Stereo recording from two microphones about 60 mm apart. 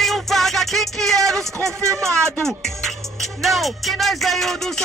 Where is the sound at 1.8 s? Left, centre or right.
Right.